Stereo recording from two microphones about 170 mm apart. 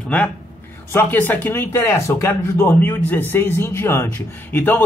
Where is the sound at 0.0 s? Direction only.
5° left (ahead or behind).